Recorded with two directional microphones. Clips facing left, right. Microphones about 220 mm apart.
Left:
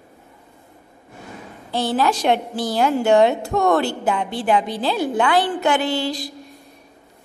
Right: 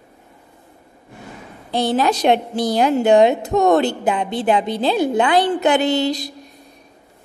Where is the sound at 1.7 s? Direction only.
20° right (ahead or behind).